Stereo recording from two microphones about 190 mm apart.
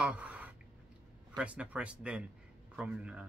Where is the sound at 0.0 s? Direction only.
5° right (ahead or behind).